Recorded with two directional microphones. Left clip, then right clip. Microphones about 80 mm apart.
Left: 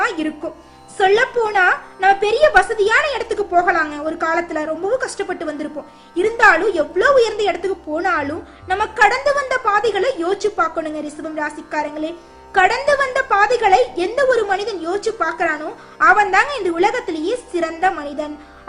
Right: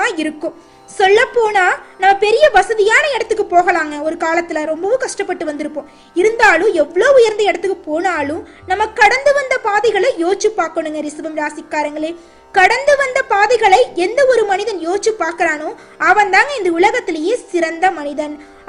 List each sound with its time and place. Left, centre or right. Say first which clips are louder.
0.0 s music: right 3 dB; right
0.9 s a woman's voice: right 4 dB; right
3.5 s a woman's voice: right 2 dB; right